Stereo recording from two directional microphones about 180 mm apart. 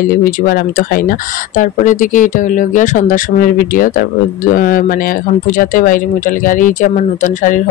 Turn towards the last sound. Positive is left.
turn(degrees=45)  # may be behind; listen again after turning